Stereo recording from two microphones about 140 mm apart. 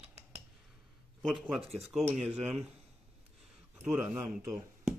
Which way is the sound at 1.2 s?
Centre (ahead or behind).